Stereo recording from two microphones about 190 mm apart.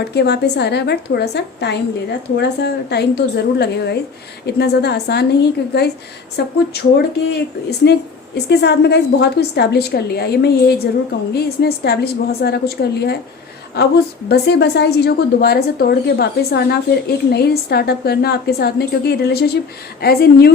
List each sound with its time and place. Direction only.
0.0 s a woman's voice: 60° left (ahead or behind)
7.8 s a woman's voice: 65° left (ahead or behind)